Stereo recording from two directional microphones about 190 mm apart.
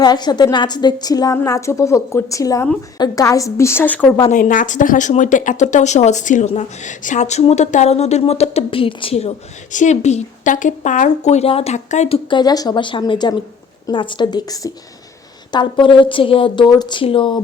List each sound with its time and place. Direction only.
0.0 s a woman's voice: 20° left (ahead or behind)
4.2 s a woman's voice: 40° left (ahead or behind); by 17.4 s 25° left (ahead or behind)